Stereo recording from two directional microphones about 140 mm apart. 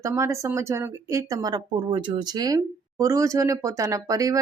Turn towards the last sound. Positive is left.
turn(degrees=-25)  # may be behind; listen again after turning